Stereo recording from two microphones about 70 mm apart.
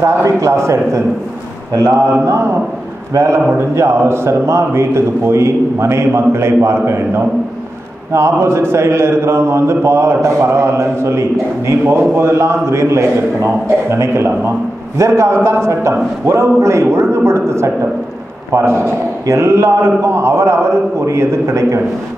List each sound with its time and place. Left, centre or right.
0.0 s a man's voice: right